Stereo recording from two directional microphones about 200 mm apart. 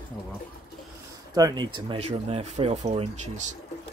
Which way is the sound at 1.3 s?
20° right (ahead or behind).